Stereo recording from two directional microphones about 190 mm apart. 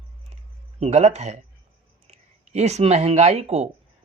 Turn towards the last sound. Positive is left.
turn(degrees=-35)  # may be behind; listen again after turning